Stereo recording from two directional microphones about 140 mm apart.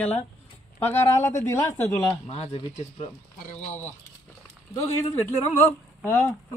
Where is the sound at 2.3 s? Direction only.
50° left (ahead or behind).